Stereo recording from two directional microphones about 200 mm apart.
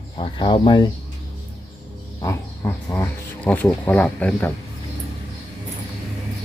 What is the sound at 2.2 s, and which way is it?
Speech, 15° left (ahead or behind).